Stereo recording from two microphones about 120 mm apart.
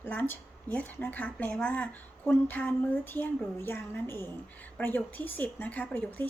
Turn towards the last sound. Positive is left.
turn(degrees=15)  # may be behind; listen again after turning